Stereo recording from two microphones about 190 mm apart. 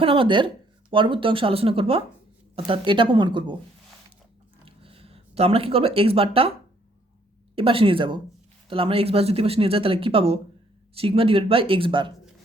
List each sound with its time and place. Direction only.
0.0 s speech: 30° right (ahead or behind)
4.6 s a sound: 30° right (ahead or behind)
7.5 s speech: 30° right (ahead or behind)